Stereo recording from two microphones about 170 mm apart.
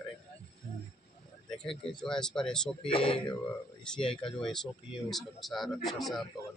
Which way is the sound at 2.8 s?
30° left (ahead or behind).